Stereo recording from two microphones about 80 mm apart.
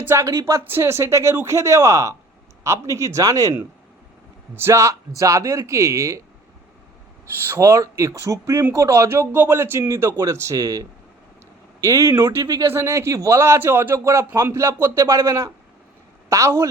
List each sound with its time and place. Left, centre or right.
0.0 s a man's voice: right
4.5 s a man's voice: right
7.4 s a man's voice: right
9.0 s a man's voice: right